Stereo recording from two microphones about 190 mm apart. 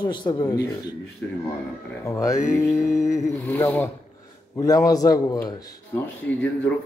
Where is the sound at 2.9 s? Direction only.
40° left (ahead or behind).